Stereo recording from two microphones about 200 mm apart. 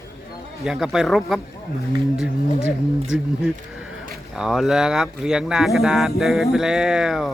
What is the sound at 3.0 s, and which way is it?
Speech, 5° right (ahead or behind).